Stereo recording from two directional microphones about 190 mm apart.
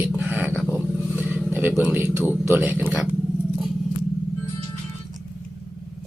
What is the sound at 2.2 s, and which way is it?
Speech, 10° right (ahead or behind).